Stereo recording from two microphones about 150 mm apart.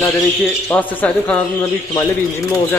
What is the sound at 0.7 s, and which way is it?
Speech, 10° left (ahead or behind).